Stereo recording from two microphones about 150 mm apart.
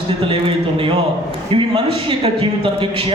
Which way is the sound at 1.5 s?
35° right (ahead or behind).